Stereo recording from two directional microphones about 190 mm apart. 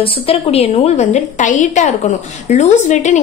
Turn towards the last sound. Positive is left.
turn(degrees=40)  # may be behind; listen again after turning